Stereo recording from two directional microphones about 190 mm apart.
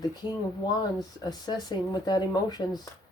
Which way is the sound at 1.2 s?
20° left (ahead or behind).